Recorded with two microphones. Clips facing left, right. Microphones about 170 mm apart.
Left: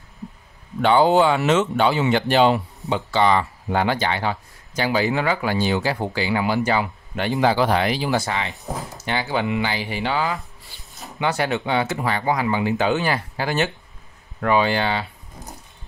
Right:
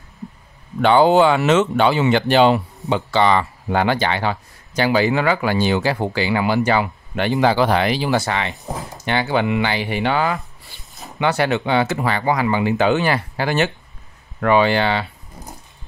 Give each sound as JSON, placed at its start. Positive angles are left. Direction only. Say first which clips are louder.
{"t": 0.8, "sound": "speech", "louder": "right 3 dB", "side_deg": -75}
{"t": 11.1, "sound": "speech", "louder": "right 4 dB", "side_deg": -70}